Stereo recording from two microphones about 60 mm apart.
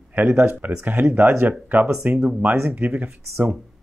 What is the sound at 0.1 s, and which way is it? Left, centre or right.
Speech, right.